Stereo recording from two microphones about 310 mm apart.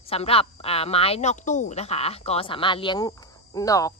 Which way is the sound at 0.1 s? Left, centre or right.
Centre.